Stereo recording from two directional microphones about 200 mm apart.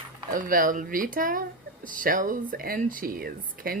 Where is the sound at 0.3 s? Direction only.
45° right (ahead or behind).